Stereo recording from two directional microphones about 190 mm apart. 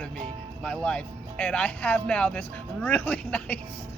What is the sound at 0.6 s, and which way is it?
Speech, 5° left (ahead or behind).